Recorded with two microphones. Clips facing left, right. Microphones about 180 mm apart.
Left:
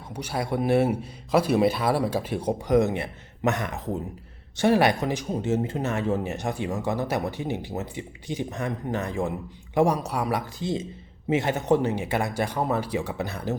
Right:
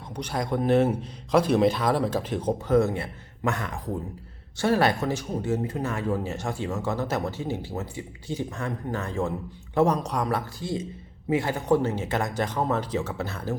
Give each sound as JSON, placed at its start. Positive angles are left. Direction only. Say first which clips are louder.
{"t": 0.1, "sound": "speech", "louder": "even", "side_deg": 5}